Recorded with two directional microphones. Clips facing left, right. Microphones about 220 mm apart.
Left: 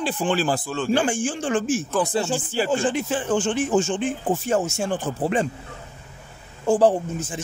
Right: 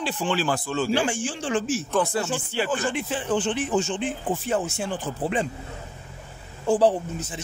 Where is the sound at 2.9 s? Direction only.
45° left (ahead or behind).